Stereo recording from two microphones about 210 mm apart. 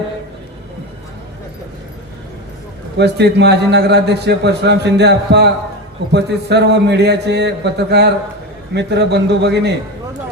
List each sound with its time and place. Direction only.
3.0 s a man's voice: 55° right (ahead or behind)